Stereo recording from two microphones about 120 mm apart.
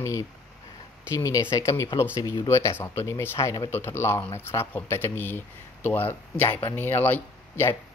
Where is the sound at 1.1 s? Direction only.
25° left (ahead or behind).